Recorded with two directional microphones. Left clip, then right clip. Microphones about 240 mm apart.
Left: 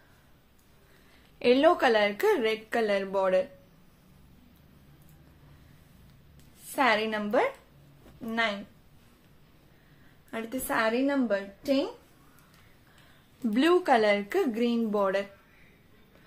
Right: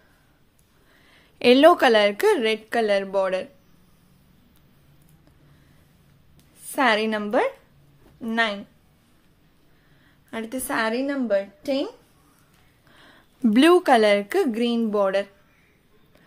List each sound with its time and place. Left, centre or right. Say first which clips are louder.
1.4 s a woman's voice: right 7 dB; right
6.6 s a woman's voice: right 5 dB; right
10.3 s a woman's voice: right 3 dB; right
13.0 s a woman's voice: right 10 dB; right